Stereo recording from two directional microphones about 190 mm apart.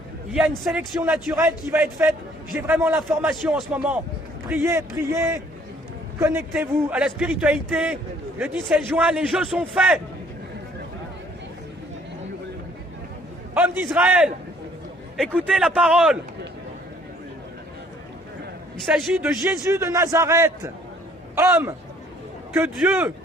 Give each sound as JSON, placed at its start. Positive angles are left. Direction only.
{"t": 0.3, "sound": "a man's voice", "side_deg": -5}
{"t": 9.0, "sound": "a man's voice", "side_deg": -5}
{"t": 13.5, "sound": "a man's voice", "side_deg": -10}
{"t": 18.9, "sound": "a man's voice", "side_deg": -5}
{"t": 19.7, "sound": "a man's voice", "side_deg": -15}